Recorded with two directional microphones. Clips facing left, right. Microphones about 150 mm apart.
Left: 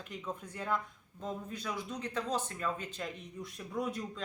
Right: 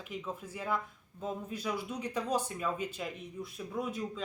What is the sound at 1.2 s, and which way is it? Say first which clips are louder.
Speech: right 2 dB; 10° right (ahead or behind).